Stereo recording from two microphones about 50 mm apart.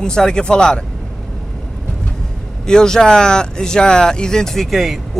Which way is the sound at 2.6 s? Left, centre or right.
Centre.